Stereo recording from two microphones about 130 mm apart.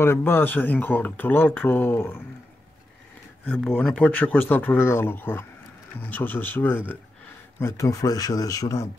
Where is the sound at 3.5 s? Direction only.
5° left (ahead or behind); by 8.8 s 25° left (ahead or behind).